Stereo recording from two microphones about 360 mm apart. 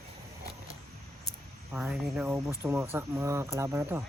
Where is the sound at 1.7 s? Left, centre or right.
Centre.